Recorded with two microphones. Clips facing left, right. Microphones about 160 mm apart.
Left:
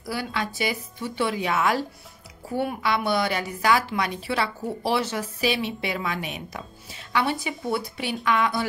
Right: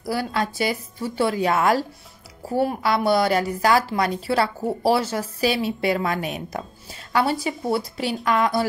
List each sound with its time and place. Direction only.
0.0 s a woman's voice: 40° right (ahead or behind)